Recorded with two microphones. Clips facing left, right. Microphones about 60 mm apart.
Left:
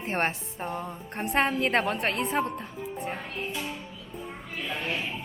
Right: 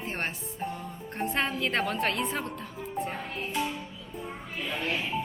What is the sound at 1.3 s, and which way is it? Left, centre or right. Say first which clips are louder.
A woman's voice: left 5 dB; left.